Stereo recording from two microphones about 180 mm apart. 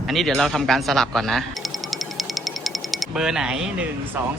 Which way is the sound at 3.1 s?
5° right (ahead or behind).